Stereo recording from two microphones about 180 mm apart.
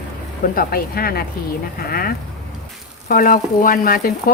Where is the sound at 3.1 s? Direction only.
50° left (ahead or behind).